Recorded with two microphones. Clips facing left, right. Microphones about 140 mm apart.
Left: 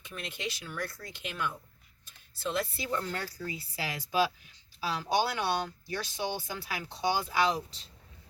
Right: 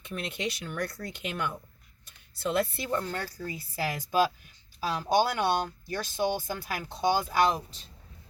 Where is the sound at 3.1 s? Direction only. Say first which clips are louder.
Right 2 dB; 40° right (ahead or behind).